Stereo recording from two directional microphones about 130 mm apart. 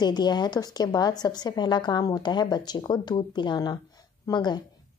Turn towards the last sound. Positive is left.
turn(degrees=35)  # may be behind; listen again after turning